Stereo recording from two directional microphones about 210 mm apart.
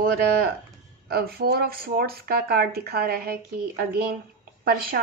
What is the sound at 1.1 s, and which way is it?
Speech, 45° right (ahead or behind).